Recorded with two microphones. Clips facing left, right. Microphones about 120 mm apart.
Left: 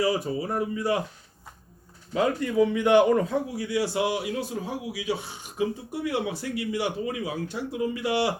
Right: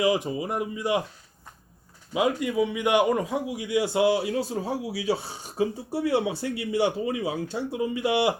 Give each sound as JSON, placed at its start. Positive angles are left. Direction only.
{"t": 0.0, "sound": "speech", "side_deg": -20}
{"t": 2.1, "sound": "a man's voice", "side_deg": -10}